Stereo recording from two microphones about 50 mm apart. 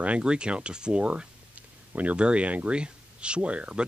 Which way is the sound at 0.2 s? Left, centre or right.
Centre.